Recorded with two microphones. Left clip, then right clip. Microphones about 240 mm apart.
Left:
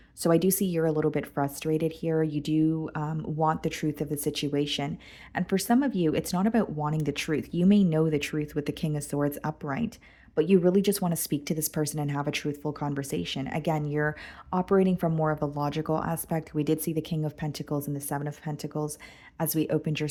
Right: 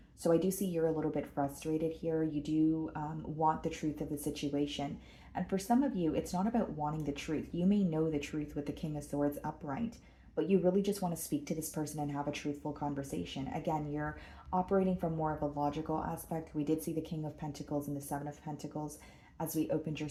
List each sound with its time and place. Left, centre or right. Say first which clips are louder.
0.2 s speech: left 7 dB; left